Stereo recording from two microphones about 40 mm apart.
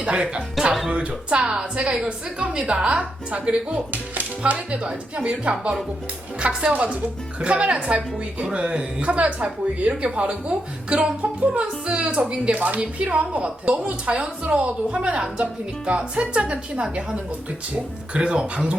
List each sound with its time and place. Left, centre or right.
0.0 s speech: right
4.8 s speech: right
18.1 s speech: right